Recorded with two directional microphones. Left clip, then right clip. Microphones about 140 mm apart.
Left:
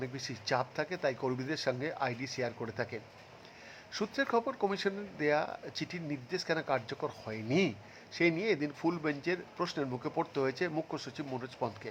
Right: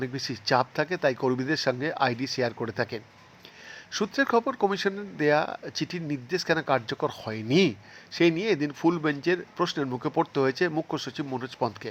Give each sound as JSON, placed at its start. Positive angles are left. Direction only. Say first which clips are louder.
{"t": 0.0, "sound": "speech", "louder": "right 8 dB", "side_deg": -25}